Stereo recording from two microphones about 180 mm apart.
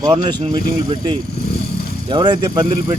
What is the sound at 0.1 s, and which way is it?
Speech, 25° right (ahead or behind).